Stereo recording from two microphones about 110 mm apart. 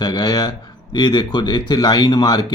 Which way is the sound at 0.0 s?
40° left (ahead or behind).